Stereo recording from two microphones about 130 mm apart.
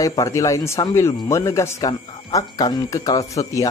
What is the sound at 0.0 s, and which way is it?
Speech, 25° left (ahead or behind).